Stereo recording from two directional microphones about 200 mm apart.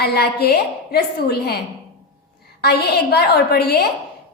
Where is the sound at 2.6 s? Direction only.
55° left (ahead or behind).